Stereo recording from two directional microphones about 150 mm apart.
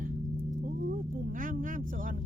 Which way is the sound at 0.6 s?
70° right (ahead or behind).